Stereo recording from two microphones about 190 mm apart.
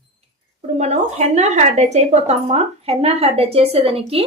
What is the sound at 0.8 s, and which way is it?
Speech, 35° right (ahead or behind).